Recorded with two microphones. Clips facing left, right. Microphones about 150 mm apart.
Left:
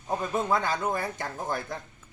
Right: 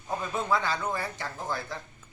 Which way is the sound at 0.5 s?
50° left (ahead or behind).